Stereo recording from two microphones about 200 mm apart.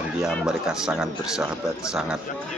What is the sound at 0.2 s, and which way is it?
Speech, centre (ahead or behind).